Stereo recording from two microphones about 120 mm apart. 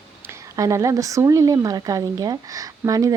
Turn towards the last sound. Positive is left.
turn(degrees=-30)  # may be behind; listen again after turning